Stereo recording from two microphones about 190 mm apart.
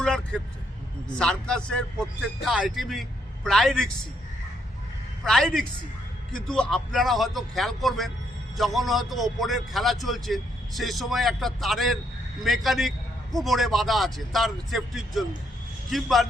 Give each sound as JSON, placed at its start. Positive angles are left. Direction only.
{"t": 0.0, "sound": "a man's voice", "side_deg": 5}
{"t": 5.2, "sound": "a man's voice", "side_deg": 5}